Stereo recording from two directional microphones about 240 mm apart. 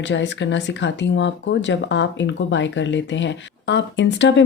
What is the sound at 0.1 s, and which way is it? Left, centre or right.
Speech, left.